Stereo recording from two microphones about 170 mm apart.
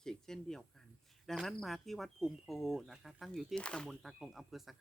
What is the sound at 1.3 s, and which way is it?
Speech, centre (ahead or behind).